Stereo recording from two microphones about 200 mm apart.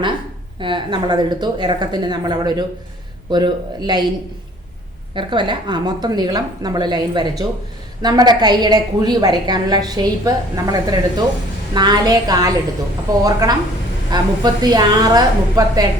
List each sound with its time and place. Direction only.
0.6 s a woman's voice: 25° right (ahead or behind)
5.1 s a woman's voice: 25° right (ahead or behind)